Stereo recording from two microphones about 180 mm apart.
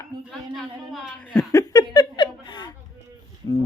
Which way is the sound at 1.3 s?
15° left (ahead or behind).